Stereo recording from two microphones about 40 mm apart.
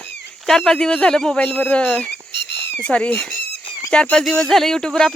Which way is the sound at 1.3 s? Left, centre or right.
Left.